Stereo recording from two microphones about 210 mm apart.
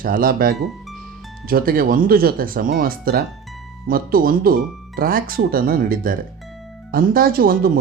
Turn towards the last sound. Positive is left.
turn(degrees=-45)  # may be behind; listen again after turning